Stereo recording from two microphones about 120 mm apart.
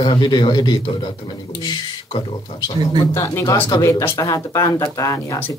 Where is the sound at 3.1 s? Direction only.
25° left (ahead or behind).